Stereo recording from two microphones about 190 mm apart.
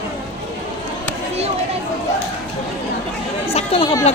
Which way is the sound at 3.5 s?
30° left (ahead or behind).